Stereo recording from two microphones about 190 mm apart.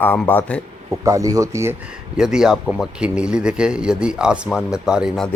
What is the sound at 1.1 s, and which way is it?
Speech, 15° right (ahead or behind).